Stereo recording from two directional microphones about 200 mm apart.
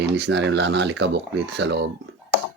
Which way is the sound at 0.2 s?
60° right (ahead or behind).